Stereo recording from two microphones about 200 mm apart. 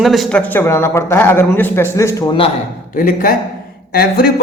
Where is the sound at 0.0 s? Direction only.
Centre (ahead or behind).